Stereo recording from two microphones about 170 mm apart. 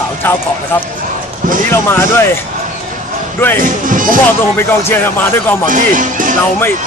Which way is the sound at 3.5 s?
50° right (ahead or behind).